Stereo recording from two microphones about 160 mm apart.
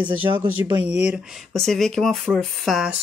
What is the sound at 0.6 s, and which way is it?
Speech, 20° right (ahead or behind).